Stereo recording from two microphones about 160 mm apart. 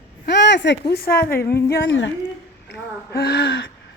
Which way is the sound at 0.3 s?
90° left.